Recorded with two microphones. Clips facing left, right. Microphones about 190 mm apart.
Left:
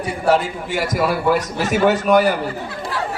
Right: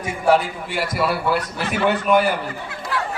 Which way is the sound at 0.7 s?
45° left (ahead or behind).